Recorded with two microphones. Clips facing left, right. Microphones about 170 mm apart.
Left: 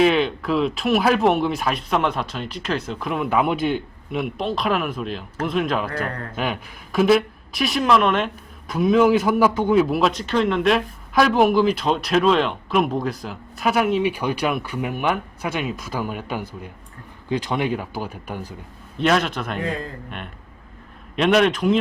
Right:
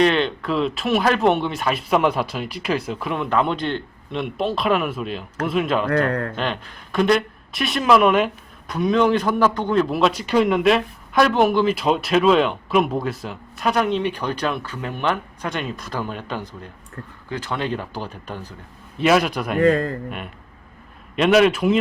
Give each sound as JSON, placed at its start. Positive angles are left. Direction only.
{"t": 0.0, "sound": "a man's voice", "side_deg": 5}
{"t": 18.9, "sound": "a man's voice", "side_deg": -5}
{"t": 19.5, "sound": "speech", "side_deg": -75}
{"t": 20.1, "sound": "a man's voice", "side_deg": -5}